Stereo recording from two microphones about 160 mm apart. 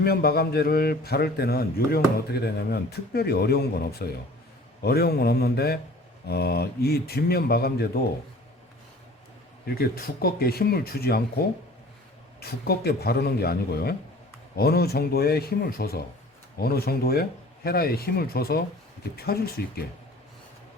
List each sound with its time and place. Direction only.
0.0 s a man's voice: 75° left (ahead or behind)
9.6 s a man's voice: 70° left (ahead or behind)
12.4 s a man's voice: 80° left